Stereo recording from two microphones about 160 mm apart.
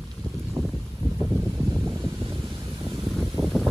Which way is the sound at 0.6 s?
20° right (ahead or behind).